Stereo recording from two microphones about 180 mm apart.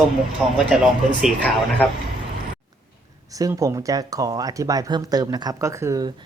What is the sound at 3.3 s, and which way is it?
Speech, 20° right (ahead or behind).